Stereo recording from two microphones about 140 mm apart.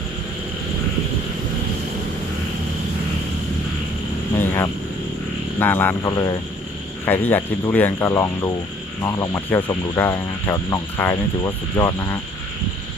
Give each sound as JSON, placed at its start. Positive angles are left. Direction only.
{"t": 4.4, "sound": "vehicle", "side_deg": 20}
{"t": 5.5, "sound": "speech", "side_deg": 15}